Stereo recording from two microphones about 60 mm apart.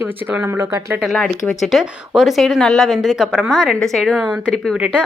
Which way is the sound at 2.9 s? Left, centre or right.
Centre.